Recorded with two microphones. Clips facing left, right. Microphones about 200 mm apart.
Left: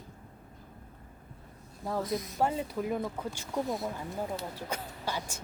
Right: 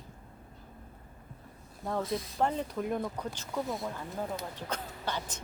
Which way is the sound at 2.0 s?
30° right (ahead or behind).